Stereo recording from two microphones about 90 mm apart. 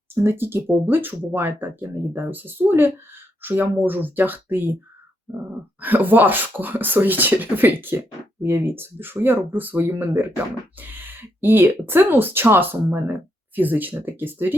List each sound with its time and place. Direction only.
0.1 s speech: 25° right (ahead or behind)
5.8 s speech: 20° right (ahead or behind)